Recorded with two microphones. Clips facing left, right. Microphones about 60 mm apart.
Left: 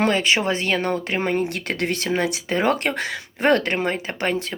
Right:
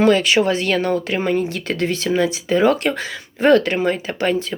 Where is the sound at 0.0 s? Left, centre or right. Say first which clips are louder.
Right 5 dB; left.